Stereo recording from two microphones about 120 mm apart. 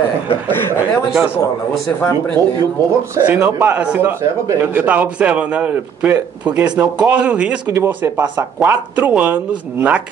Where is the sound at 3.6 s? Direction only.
10° right (ahead or behind).